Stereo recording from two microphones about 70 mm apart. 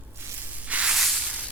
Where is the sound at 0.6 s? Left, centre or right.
Centre.